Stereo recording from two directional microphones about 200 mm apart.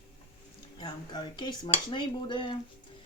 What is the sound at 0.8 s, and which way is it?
Speech, 20° left (ahead or behind).